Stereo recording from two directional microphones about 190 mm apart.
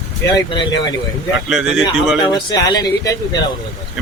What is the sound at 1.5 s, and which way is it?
Speech, 5° right (ahead or behind).